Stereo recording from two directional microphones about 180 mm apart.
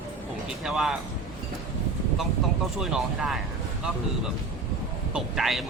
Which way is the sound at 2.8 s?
Centre (ahead or behind).